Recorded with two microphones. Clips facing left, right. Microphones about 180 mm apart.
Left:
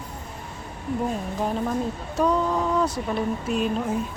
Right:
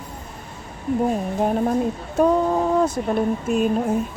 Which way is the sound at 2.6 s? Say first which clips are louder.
Right 4 dB; 50° right (ahead or behind).